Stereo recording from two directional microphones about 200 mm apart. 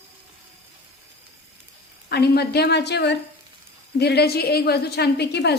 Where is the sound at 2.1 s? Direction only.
55° left (ahead or behind).